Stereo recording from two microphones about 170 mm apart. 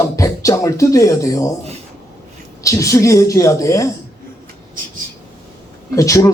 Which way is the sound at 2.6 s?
20° left (ahead or behind).